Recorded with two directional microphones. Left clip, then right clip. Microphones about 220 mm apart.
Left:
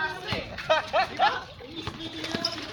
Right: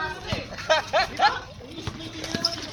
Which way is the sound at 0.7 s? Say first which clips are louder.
Right 2 dB; 50° right (ahead or behind).